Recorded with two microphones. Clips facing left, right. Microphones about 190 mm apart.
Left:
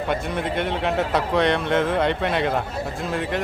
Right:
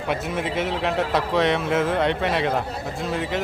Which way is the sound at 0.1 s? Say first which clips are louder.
Right 2 dB; 5° right (ahead or behind).